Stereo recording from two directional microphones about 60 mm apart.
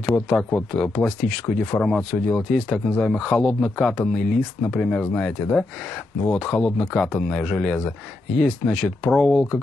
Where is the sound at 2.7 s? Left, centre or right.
Centre.